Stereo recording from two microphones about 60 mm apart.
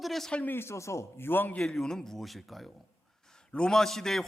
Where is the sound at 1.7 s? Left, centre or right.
Centre.